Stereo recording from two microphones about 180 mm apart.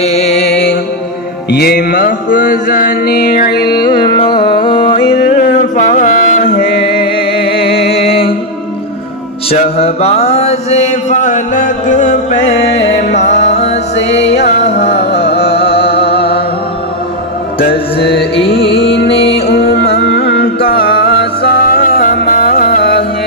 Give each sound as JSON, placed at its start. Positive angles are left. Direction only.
{"t": 0.0, "sound": "music", "side_deg": 35}
{"t": 0.4, "sound": "music", "side_deg": 70}
{"t": 1.5, "sound": "mantra", "side_deg": 60}
{"t": 3.7, "sound": "music", "side_deg": 25}
{"t": 5.6, "sound": "music", "side_deg": 45}
{"t": 6.8, "sound": "music", "side_deg": 60}
{"t": 7.9, "sound": "music", "side_deg": 35}
{"t": 9.5, "sound": "mantra", "side_deg": 35}
{"t": 14.6, "sound": "music", "side_deg": 35}
{"t": 15.9, "sound": "music", "side_deg": 65}
{"t": 18.6, "sound": "music", "side_deg": 75}